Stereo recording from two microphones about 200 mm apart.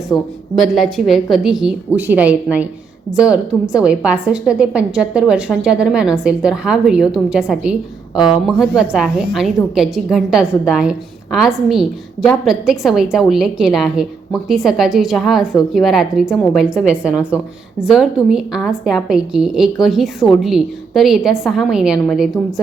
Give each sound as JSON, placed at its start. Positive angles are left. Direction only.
{"t": 0.1, "sound": "speech", "side_deg": 20}
{"t": 0.7, "sound": "a woman's voice", "side_deg": 0}